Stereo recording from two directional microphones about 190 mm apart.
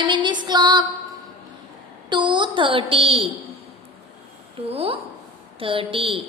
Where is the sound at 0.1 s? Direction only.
25° right (ahead or behind).